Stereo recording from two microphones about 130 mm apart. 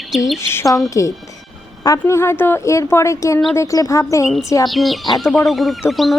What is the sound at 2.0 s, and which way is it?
Speech, 20° left (ahead or behind).